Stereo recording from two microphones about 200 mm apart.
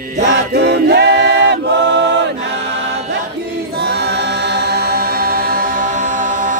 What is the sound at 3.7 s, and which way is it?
Choir, 55° right (ahead or behind).